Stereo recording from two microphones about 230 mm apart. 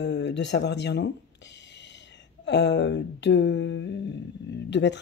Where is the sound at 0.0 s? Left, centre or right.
Left.